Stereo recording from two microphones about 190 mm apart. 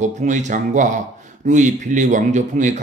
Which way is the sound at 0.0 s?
40° right (ahead or behind).